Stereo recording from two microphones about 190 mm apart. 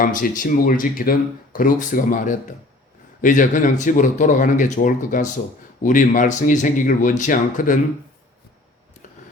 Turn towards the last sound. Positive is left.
turn(degrees=45)  # may be behind; listen again after turning